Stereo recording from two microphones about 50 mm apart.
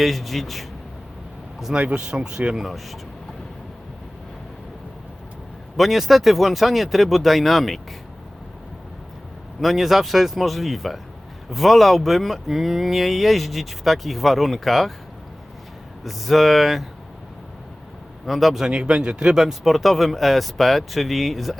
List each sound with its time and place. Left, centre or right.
0.0 s speech: centre
1.7 s speech: centre
2.6 s speech: centre
5.7 s speech: centre
9.6 s speech: centre
16.0 s speech: centre
18.3 s speech: centre
18.6 s speech: centre